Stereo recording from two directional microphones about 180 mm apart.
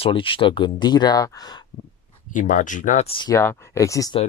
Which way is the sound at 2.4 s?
45° left (ahead or behind).